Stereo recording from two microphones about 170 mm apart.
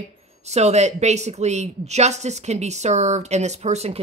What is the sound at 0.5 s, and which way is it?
Speech, 40° right (ahead or behind).